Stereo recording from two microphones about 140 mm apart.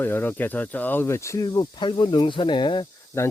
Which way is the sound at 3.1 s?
20° left (ahead or behind).